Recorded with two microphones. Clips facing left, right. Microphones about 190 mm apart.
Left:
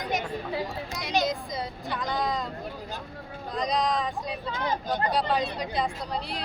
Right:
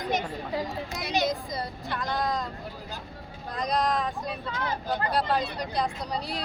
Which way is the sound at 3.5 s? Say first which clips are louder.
Even; centre (ahead or behind).